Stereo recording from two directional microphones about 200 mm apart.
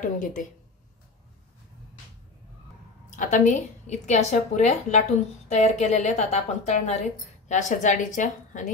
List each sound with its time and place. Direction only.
0.0 s a woman's voice: 40° left (ahead or behind)
3.2 s a woman's voice: 40° left (ahead or behind)